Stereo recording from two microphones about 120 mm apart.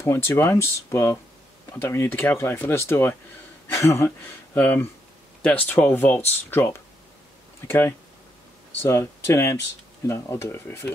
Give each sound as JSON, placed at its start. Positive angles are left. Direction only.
{"t": 0.0, "sound": "speech", "side_deg": 20}